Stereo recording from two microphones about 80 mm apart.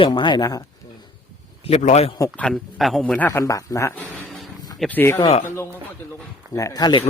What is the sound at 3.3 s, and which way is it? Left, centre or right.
Speech, left.